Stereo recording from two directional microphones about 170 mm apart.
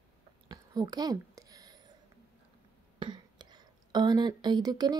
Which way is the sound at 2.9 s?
25° right (ahead or behind).